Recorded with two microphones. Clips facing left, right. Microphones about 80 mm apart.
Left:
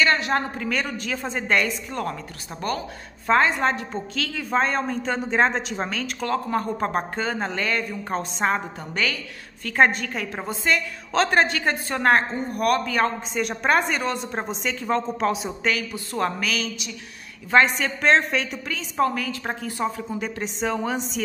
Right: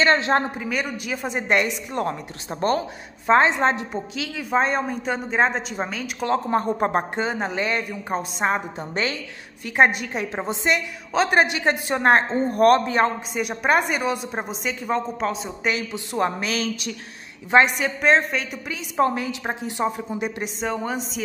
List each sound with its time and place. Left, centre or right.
0.0 s a woman's voice: right
0.6 s a woman's voice: centre
3.3 s a woman's voice: right; by 6.1 s centre
6.2 s a woman's voice: right
7.9 s a woman's voice: centre
8.9 s a woman's voice: right
9.7 s a woman's voice: centre
13.3 s a woman's voice: centre
15.6 s a woman's voice: centre
16.4 s a woman's voice: right
17.5 s a woman's voice: centre
18.9 s a woman's voice: right
20.4 s speech: centre